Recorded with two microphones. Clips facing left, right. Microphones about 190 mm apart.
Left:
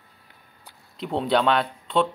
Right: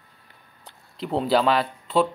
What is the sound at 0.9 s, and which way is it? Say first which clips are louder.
Speech: right 1 dB; centre (ahead or behind).